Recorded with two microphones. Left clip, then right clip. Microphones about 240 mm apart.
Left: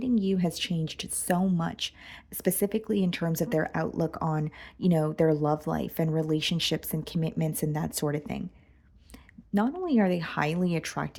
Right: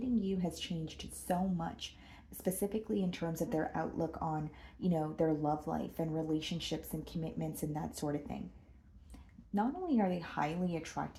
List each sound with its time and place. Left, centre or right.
0.0 s speech: left
9.6 s speech: left